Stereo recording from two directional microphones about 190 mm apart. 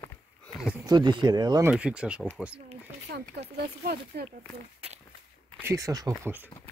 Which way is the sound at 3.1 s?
55° right (ahead or behind).